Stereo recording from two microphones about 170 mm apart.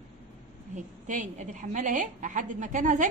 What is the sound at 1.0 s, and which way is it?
A woman's voice, 50° right (ahead or behind).